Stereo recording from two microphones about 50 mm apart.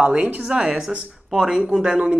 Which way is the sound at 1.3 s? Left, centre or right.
Centre.